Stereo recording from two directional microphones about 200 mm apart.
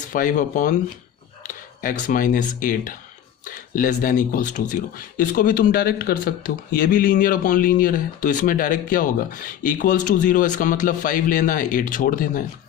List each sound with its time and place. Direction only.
0.1 s speech: 40° left (ahead or behind)